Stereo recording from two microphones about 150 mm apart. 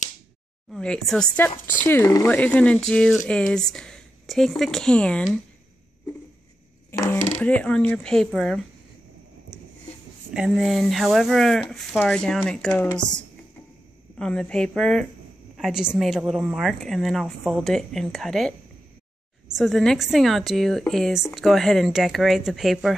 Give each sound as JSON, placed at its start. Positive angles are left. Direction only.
{"t": 0.7, "sound": "speech", "side_deg": 5}
{"t": 6.9, "sound": "a sound", "side_deg": 15}
{"t": 7.3, "sound": "speech", "side_deg": 10}
{"t": 9.5, "sound": "a sound", "side_deg": -5}
{"t": 10.3, "sound": "speech", "side_deg": -5}
{"t": 14.1, "sound": "speech", "side_deg": 5}
{"t": 19.5, "sound": "speech", "side_deg": 0}